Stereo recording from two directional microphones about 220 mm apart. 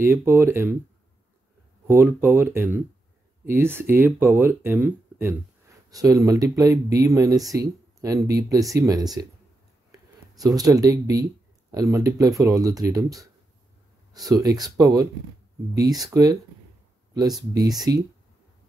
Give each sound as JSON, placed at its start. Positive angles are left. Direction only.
{"t": 0.0, "sound": "speech", "side_deg": -10}
{"t": 1.9, "sound": "speech", "side_deg": -10}
{"t": 9.8, "sound": "a sound", "side_deg": -15}
{"t": 11.7, "sound": "speech", "side_deg": -15}
{"t": 14.1, "sound": "speech", "side_deg": -15}